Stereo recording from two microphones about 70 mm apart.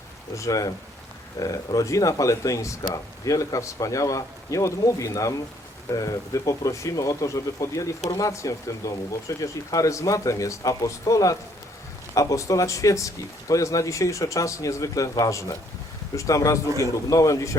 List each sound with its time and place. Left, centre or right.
0.3 s speech: left